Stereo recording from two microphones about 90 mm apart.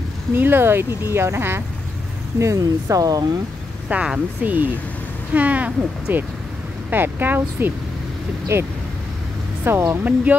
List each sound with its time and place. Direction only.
0.4 s speech: 25° right (ahead or behind); by 3.3 s 45° right (ahead or behind)
3.9 s speech: 15° right (ahead or behind)
9.7 s speech: 25° right (ahead or behind)